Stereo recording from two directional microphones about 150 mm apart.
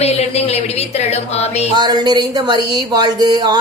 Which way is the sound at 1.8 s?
30° right (ahead or behind).